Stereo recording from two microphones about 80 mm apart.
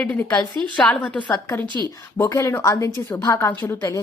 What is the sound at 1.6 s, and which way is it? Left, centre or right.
Speech, right.